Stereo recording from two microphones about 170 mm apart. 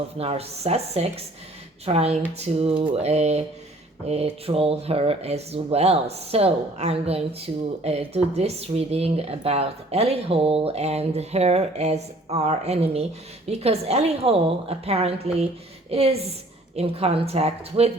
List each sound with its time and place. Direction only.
0.2 s speech: 35° right (ahead or behind)